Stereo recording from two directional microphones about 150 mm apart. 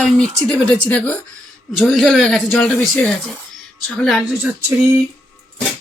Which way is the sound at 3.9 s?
Centre (ahead or behind).